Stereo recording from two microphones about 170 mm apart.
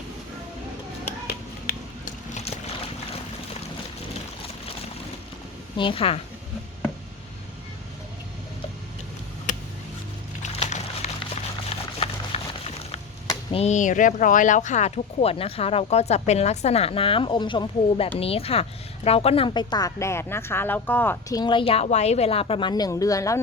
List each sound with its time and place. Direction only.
1.3 s finger snapping: 65° left (ahead or behind)
2.3 s vehicle: 40° left (ahead or behind)
5.7 s a woman's voice: 30° left (ahead or behind)
10.4 s a sound: 40° left (ahead or behind)
13.5 s a woman's voice: 40° left (ahead or behind); by 23.4 s 20° left (ahead or behind)